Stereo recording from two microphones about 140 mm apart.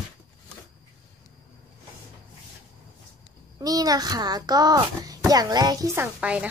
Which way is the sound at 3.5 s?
25° right (ahead or behind).